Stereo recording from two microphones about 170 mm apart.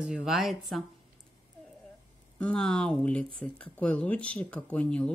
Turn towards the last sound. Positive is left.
turn(degrees=5)  # may be behind; listen again after turning